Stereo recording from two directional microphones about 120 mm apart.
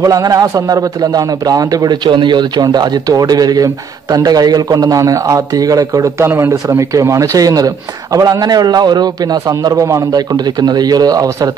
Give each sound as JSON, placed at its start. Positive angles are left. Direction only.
{"t": 0.0, "sound": "a man's voice", "side_deg": -30}